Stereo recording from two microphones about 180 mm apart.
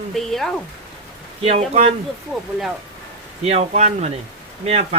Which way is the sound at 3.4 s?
35° right (ahead or behind).